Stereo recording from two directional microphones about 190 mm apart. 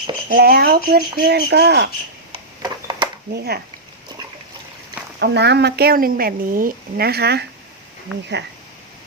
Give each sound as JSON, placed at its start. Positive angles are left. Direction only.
{"t": 0.3, "sound": "speech", "side_deg": -55}
{"t": 2.6, "sound": "a sound", "side_deg": -20}
{"t": 3.3, "sound": "speech", "side_deg": -60}
{"t": 5.2, "sound": "speech", "side_deg": -60}